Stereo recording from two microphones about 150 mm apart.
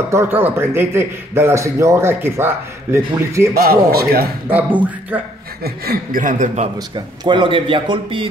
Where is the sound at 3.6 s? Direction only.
90° right.